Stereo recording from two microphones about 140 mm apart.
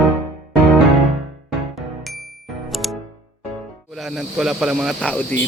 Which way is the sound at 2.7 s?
Centre (ahead or behind).